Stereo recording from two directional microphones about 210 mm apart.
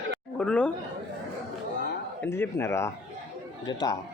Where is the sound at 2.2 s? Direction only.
10° left (ahead or behind).